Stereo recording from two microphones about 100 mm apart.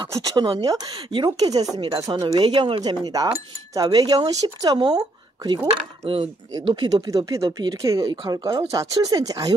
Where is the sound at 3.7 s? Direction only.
40° right (ahead or behind).